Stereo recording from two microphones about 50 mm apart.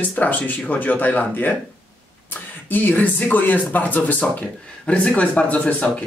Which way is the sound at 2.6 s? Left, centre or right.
Left.